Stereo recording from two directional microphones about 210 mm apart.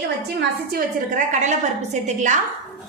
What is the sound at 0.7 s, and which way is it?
A woman's voice, 40° right (ahead or behind).